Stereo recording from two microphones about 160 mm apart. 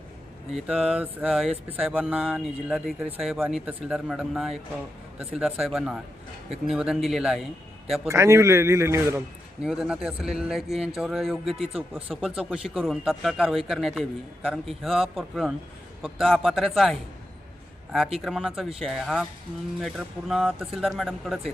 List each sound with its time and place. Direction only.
0.5 s speech: centre (ahead or behind)
8.0 s a man's voice: 20° right (ahead or behind)
9.6 s speech: 5° right (ahead or behind)